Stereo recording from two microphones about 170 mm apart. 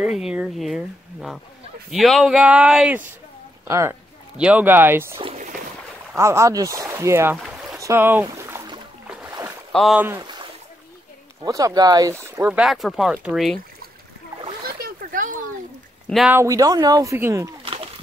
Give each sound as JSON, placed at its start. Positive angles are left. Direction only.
{"t": 0.0, "sound": "speech", "side_deg": -5}
{"t": 3.6, "sound": "speech", "side_deg": -15}
{"t": 5.2, "sound": "speech", "side_deg": -40}
{"t": 6.1, "sound": "speech", "side_deg": -15}
{"t": 7.8, "sound": "boat", "side_deg": -15}
{"t": 9.7, "sound": "boat", "side_deg": 0}
{"t": 9.9, "sound": "speech", "side_deg": -15}
{"t": 11.4, "sound": "speech", "side_deg": -20}
{"t": 14.8, "sound": "a sound", "side_deg": -55}
{"t": 16.3, "sound": "speech", "side_deg": -15}